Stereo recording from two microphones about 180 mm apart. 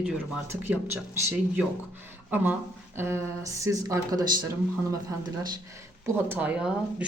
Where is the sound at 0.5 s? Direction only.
10° right (ahead or behind).